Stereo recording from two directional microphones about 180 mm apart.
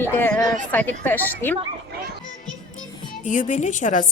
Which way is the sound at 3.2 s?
45° left (ahead or behind).